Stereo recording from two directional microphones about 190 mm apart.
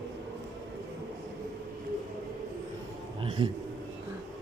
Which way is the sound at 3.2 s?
25° right (ahead or behind).